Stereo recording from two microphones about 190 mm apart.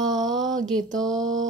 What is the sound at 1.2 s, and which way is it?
Mantra, 90° right.